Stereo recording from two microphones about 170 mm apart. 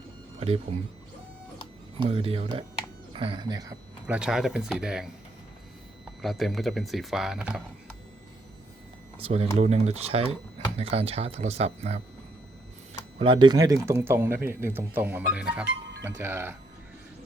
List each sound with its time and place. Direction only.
0.3 s speech: 35° right (ahead or behind)
2.0 s speech: 35° right (ahead or behind)
4.0 s speech: 5° right (ahead or behind)
6.2 s speech: centre (ahead or behind)
9.1 s speech: 35° right (ahead or behind); by 16.6 s 15° right (ahead or behind)